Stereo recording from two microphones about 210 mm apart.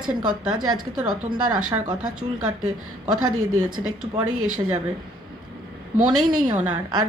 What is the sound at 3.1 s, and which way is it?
Speech, 90° right.